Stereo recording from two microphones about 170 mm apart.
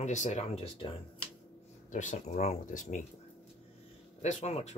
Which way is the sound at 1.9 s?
45° left (ahead or behind).